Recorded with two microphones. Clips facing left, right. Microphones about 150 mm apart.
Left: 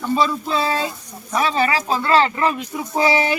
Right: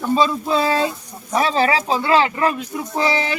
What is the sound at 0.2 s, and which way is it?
Speech, 15° right (ahead or behind).